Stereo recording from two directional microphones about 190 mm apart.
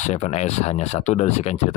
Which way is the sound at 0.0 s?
35° left (ahead or behind).